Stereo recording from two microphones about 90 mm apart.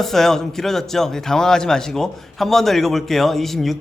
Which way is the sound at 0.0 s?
5° left (ahead or behind).